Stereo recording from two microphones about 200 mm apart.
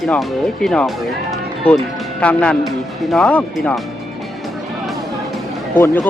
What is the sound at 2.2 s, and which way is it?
Speech, 5° left (ahead or behind).